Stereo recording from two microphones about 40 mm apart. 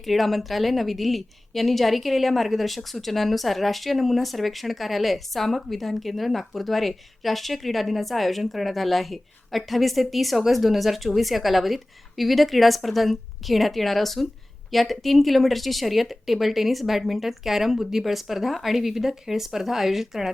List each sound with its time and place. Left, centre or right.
0.0 s a woman's voice: centre